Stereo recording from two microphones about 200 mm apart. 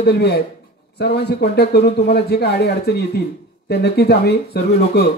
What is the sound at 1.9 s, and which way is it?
Speech, 35° left (ahead or behind).